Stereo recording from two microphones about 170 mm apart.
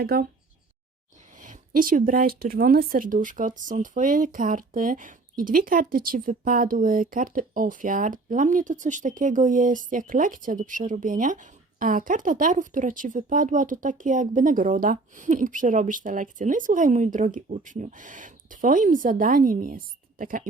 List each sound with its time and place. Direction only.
0.0 s speech: 60° right (ahead or behind)
1.4 s speech: 50° right (ahead or behind)